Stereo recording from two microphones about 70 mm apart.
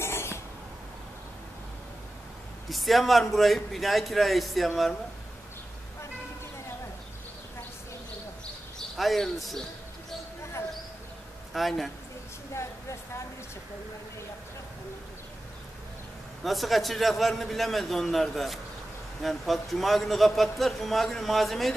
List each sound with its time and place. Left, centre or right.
0.0 s a sound: left
2.7 s a man's voice: centre
8.7 s speech: centre
11.5 s a man's voice: centre
16.4 s a man's voice: centre